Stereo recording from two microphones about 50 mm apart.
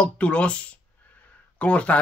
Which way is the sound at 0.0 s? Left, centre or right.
Left.